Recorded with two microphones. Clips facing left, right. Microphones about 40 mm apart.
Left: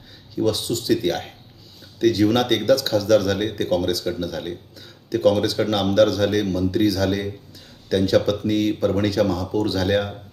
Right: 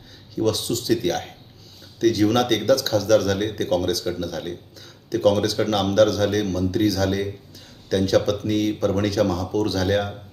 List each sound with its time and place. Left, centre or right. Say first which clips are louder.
0.3 s speech: left 1 dB; centre